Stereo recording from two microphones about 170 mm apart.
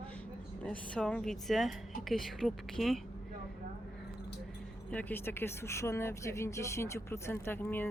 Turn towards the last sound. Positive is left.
turn(degrees=10)  # may be behind; listen again after turning